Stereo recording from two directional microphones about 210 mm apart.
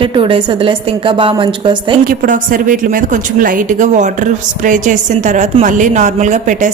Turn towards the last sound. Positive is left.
turn(degrees=-35)  # may be behind; listen again after turning